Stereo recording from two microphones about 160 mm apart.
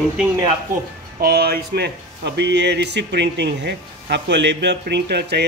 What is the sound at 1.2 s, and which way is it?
Speech, 70° right (ahead or behind).